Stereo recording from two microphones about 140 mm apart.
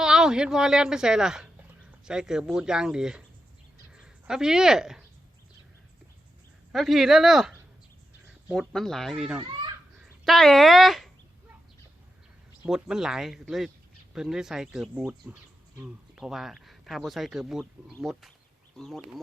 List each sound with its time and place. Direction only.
0.0 s speech: 5° right (ahead or behind)
6.7 s speech: centre (ahead or behind)
8.7 s speech: centre (ahead or behind)
9.4 s speech: 35° right (ahead or behind)
10.2 s speech: centre (ahead or behind)
12.6 s speech: 5° right (ahead or behind)